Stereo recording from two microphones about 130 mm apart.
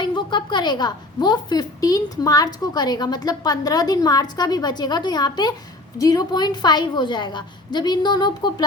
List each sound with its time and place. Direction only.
0.0 s a woman's voice: 35° left (ahead or behind)